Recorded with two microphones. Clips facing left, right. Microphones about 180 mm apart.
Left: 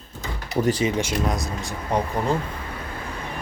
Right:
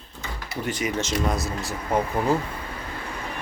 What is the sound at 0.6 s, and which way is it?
Speech, 30° left (ahead or behind).